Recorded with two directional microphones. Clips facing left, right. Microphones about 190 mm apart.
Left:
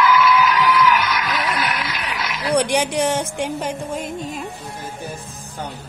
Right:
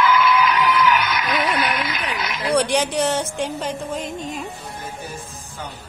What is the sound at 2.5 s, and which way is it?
Speech, 15° left (ahead or behind).